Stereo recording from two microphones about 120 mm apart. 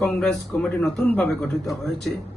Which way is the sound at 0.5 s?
15° left (ahead or behind).